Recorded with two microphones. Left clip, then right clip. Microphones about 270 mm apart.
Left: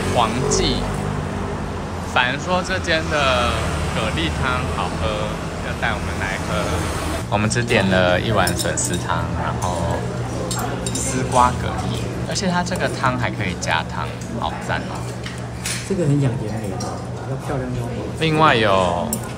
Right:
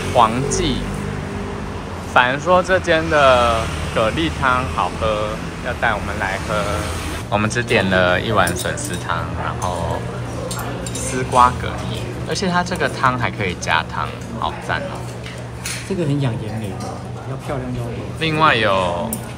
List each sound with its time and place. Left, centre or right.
0.1 s speech: centre
2.1 s speech: centre
12.3 s speech: centre
18.2 s speech: centre